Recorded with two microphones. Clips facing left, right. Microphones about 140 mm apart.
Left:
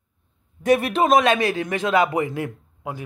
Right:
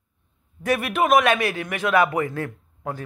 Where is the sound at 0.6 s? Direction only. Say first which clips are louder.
Left 4 dB; 20° left (ahead or behind).